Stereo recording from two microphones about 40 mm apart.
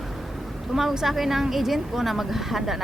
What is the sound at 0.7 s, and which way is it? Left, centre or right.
A woman's voice, centre.